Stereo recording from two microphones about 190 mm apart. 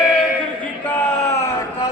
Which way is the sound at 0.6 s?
10° left (ahead or behind).